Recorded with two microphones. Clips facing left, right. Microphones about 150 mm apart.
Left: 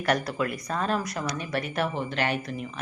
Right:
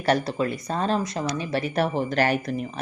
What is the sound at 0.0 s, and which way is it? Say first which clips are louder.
Speech: right 3 dB; 30° right (ahead or behind).